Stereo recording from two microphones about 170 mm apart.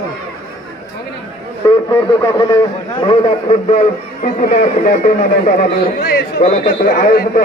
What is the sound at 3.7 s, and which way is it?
Speech, 45° left (ahead or behind).